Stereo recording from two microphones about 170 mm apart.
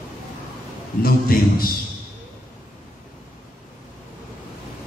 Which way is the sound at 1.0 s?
60° left (ahead or behind).